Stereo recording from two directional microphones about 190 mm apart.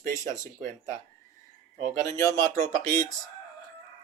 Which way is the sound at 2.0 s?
15° left (ahead or behind).